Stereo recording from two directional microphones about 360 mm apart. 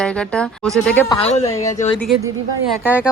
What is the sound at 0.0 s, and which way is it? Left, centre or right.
Speech, centre.